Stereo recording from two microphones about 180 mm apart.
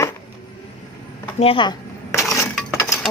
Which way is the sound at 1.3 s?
30° left (ahead or behind).